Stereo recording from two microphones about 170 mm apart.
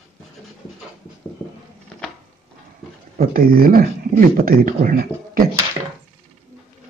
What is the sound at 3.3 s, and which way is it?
Speech, 60° right (ahead or behind).